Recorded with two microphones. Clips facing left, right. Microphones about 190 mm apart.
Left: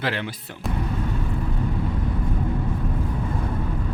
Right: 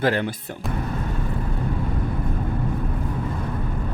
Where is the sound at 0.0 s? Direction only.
45° right (ahead or behind).